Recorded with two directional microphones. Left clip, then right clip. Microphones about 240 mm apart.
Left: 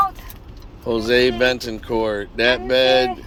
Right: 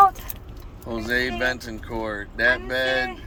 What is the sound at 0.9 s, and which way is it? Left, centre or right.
Speech, left.